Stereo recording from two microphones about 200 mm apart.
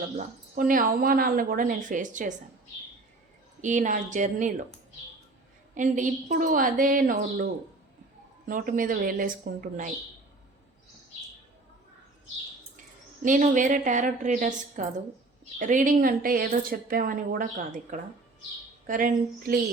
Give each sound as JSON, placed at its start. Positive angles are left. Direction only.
{"t": 0.5, "sound": "speech", "side_deg": -45}
{"t": 3.6, "sound": "a woman's voice", "side_deg": -40}
{"t": 5.7, "sound": "speech", "side_deg": -40}
{"t": 8.4, "sound": "speech", "side_deg": -40}
{"t": 13.2, "sound": "a woman's voice", "side_deg": -40}